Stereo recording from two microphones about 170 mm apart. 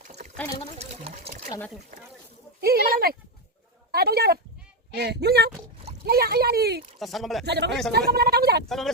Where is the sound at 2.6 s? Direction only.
65° right (ahead or behind).